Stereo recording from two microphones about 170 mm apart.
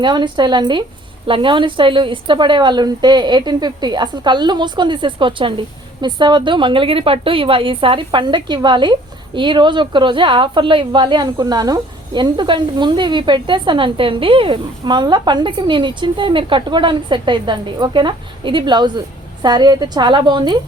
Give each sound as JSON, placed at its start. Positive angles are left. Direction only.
{"t": 0.0, "sound": "a woman's voice", "side_deg": -25}